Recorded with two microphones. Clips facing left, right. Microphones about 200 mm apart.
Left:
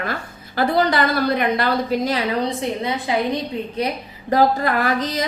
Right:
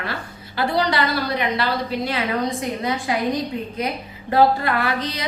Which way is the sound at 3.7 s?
35° left (ahead or behind).